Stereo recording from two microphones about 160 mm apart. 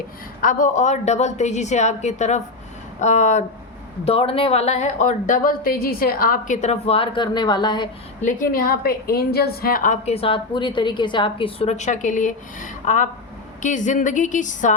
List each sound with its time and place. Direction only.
0.4 s a woman's voice: 50° left (ahead or behind)
4.0 s a woman's voice: 35° left (ahead or behind); by 6.6 s 65° left (ahead or behind)
6.6 s a woman's voice: 40° left (ahead or behind)
8.2 s a woman's voice: 65° left (ahead or behind)